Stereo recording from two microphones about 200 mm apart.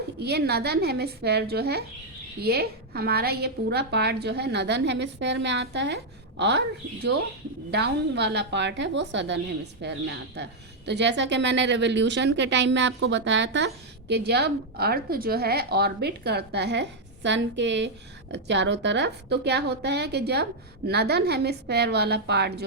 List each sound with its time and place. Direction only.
0.2 s a woman's voice: 55° right (ahead or behind)
7.7 s a woman's voice: 55° right (ahead or behind)